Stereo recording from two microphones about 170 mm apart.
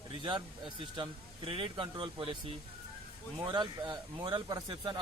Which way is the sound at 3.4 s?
25° right (ahead or behind).